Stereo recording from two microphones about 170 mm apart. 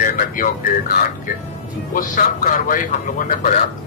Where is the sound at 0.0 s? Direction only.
55° left (ahead or behind).